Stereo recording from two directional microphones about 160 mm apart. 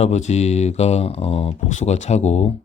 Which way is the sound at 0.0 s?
45° left (ahead or behind).